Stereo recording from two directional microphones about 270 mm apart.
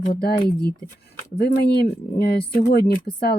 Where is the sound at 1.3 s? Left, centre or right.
Left.